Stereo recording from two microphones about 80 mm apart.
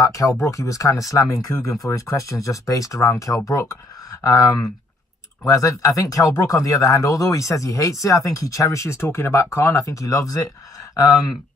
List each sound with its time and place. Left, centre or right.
0.0 s speech: left